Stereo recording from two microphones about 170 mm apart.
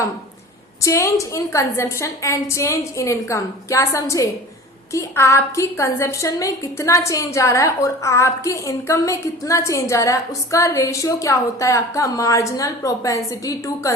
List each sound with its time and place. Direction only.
0.8 s a woman's voice: 15° left (ahead or behind)